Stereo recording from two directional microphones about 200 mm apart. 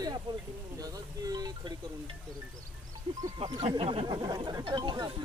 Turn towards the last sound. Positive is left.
turn(degrees=-20)  # may be behind; listen again after turning